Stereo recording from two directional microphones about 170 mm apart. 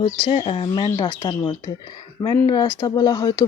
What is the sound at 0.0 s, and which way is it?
Speech, 30° left (ahead or behind).